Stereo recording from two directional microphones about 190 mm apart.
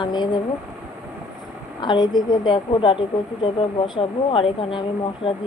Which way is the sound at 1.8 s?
25° left (ahead or behind).